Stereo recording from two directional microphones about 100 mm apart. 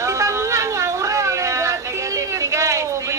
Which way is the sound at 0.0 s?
30° right (ahead or behind).